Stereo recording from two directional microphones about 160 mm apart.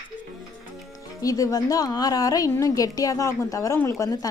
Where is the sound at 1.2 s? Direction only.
20° left (ahead or behind).